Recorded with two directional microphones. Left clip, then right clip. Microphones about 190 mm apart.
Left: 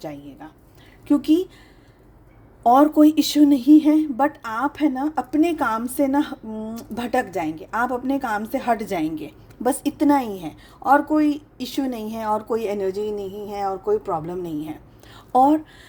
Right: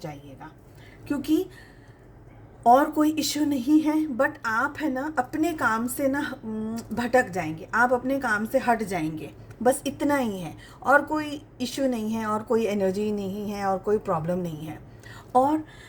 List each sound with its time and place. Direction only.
1.0 s a woman's voice: 50° left (ahead or behind)
2.6 s a woman's voice: 45° left (ahead or behind)